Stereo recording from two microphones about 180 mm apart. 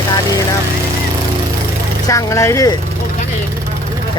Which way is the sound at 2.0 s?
15° left (ahead or behind).